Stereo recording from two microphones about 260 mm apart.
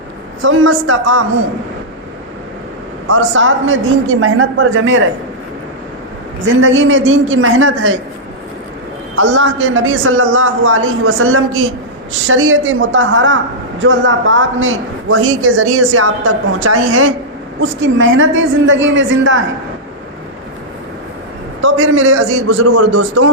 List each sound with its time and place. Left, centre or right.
0.4 s a woman's voice: right
3.1 s a woman's voice: right
6.4 s a woman's voice: right
9.1 s a woman's voice: right
17.6 s a woman's voice: right
21.6 s a man's voice: right